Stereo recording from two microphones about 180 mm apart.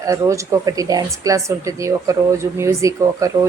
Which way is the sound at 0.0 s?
15° right (ahead or behind).